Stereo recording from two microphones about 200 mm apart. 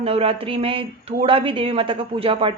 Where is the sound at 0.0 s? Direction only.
30° right (ahead or behind).